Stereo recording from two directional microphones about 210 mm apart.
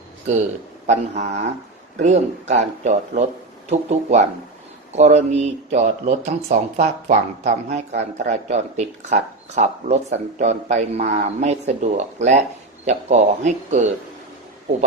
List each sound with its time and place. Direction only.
0.9 s speech: 35° right (ahead or behind)